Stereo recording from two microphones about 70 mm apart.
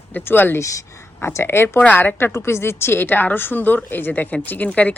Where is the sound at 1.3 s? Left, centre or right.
Left.